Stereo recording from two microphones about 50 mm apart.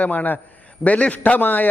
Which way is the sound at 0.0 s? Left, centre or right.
Left.